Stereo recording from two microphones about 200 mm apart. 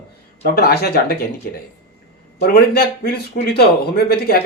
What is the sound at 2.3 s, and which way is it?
Speech, 50° left (ahead or behind).